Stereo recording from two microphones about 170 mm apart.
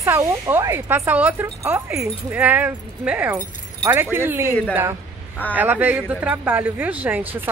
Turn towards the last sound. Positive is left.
turn(degrees=-10)  # may be behind; listen again after turning